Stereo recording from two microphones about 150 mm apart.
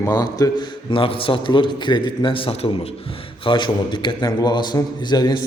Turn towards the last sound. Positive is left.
turn(degrees=30)  # may be behind; listen again after turning